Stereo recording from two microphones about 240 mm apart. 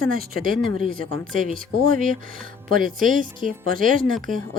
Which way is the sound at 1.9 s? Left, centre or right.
Right.